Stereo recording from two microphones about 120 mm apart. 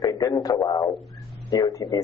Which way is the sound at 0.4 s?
30° left (ahead or behind).